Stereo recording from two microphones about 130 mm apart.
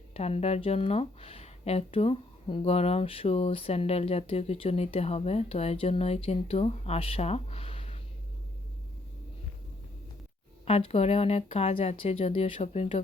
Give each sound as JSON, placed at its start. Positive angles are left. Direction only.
{"t": 0.1, "sound": "speech", "side_deg": 50}
{"t": 10.7, "sound": "speech", "side_deg": 50}